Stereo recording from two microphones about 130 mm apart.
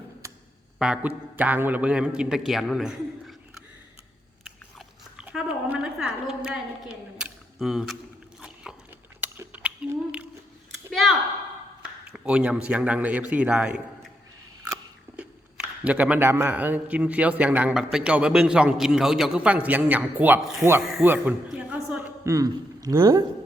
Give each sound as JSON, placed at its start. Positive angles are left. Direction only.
{"t": 0.8, "sound": "a man's voice", "side_deg": -10}
{"t": 5.1, "sound": "a sound", "side_deg": -5}
{"t": 6.0, "sound": "a woman's voice", "side_deg": -5}
{"t": 8.4, "sound": "biting", "side_deg": -5}
{"t": 9.2, "sound": "a sound", "side_deg": -10}
{"t": 12.0, "sound": "a man's voice", "side_deg": -5}
{"t": 20.4, "sound": "speech", "side_deg": 0}
{"t": 21.0, "sound": "a man's voice", "side_deg": -15}
{"t": 22.2, "sound": "speech", "side_deg": -25}